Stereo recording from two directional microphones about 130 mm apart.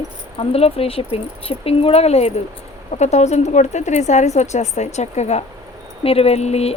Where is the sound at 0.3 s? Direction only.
50° left (ahead or behind).